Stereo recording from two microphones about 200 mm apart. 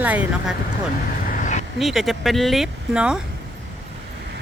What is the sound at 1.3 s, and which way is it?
Vehicle, 40° left (ahead or behind).